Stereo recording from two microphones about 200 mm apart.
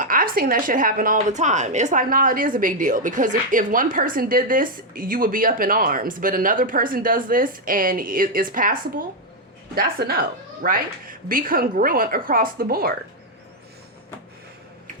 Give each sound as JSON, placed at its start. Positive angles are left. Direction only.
{"t": 0.0, "sound": "a woman's voice", "side_deg": -45}